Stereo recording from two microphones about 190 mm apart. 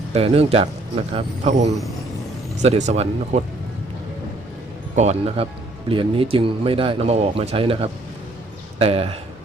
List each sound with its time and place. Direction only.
0.1 s speech: 30° right (ahead or behind)
4.9 s speech: 35° right (ahead or behind)